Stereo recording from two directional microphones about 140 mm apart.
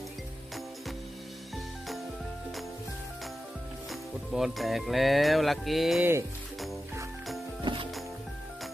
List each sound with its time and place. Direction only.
3.8 s music: centre (ahead or behind)
7.6 s music: 35° right (ahead or behind)